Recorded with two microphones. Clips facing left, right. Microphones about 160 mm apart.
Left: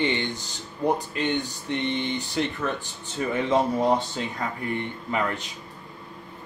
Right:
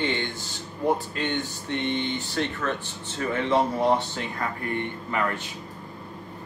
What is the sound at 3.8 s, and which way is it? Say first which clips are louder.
Speech: even; 15° left (ahead or behind).